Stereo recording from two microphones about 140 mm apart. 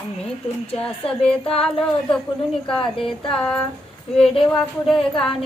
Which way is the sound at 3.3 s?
5° left (ahead or behind).